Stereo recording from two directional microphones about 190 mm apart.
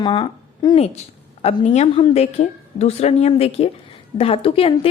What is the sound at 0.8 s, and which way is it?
A woman's voice, 35° left (ahead or behind).